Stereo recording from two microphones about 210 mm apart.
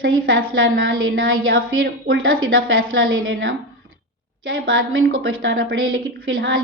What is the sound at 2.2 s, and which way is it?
Speech, 75° right (ahead or behind).